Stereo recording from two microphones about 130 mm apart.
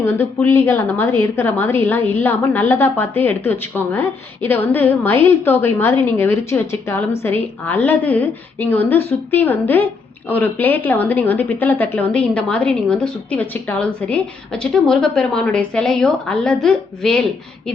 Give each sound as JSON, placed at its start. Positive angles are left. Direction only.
{"t": 0.0, "sound": "a woman's voice", "side_deg": 15}